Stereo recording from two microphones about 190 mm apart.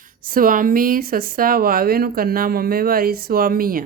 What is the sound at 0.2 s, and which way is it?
A woman's voice, 45° right (ahead or behind).